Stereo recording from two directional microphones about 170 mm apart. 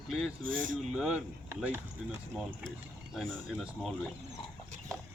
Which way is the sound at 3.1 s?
Centre (ahead or behind).